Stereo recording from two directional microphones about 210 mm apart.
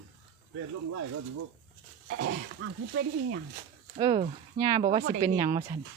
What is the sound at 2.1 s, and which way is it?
Speech, 70° right (ahead or behind).